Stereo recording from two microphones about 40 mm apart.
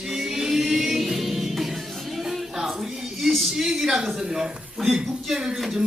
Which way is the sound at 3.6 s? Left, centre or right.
Centre.